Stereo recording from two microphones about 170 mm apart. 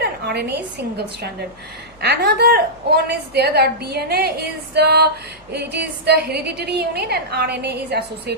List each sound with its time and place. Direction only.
0.0 s a woman's voice: 75° right (ahead or behind)